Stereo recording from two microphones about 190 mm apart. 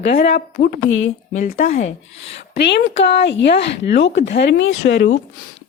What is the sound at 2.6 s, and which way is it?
Speech, 65° left (ahead or behind).